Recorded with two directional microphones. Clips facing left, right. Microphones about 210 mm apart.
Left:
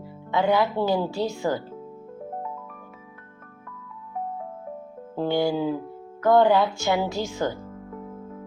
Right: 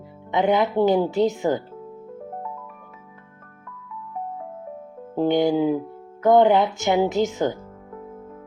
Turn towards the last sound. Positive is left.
turn(degrees=-15)  # may be behind; listen again after turning